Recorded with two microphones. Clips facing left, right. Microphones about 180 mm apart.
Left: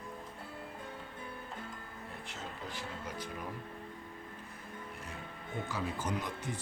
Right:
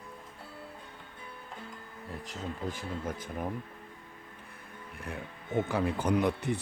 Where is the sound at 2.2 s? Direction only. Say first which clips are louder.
Right 9 dB; 45° right (ahead or behind).